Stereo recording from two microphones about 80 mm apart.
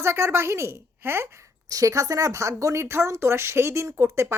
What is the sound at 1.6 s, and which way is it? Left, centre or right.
Speech, right.